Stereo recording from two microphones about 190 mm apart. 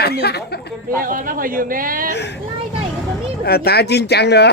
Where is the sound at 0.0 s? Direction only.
55° left (ahead or behind).